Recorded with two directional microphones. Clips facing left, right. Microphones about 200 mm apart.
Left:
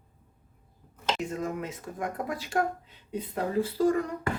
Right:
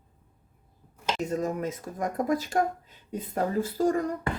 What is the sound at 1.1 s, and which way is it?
Speech, 40° right (ahead or behind).